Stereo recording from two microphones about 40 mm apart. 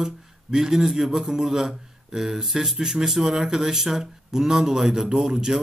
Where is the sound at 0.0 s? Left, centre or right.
Centre.